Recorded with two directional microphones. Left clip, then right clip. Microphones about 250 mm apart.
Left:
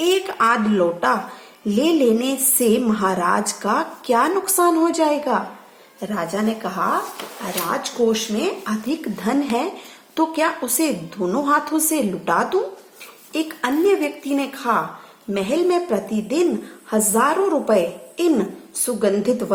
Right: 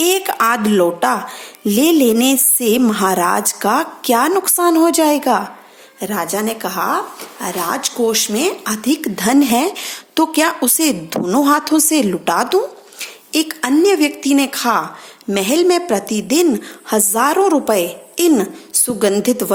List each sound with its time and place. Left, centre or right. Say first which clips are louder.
0.0 s speech: right 3 dB; right